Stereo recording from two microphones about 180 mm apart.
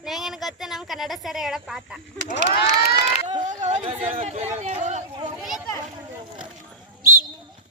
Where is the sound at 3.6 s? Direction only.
35° right (ahead or behind).